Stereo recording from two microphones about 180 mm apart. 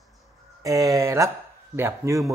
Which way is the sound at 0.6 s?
20° right (ahead or behind).